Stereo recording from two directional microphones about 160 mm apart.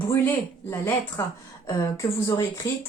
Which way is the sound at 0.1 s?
15° left (ahead or behind).